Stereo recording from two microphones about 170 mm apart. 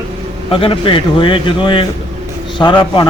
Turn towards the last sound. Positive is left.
turn(degrees=25)  # may be behind; listen again after turning